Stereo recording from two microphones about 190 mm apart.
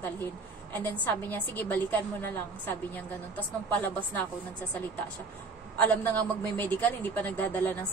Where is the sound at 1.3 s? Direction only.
10° left (ahead or behind).